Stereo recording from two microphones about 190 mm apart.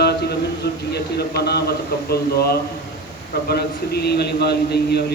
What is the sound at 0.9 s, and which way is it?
A man's voice, 60° left (ahead or behind).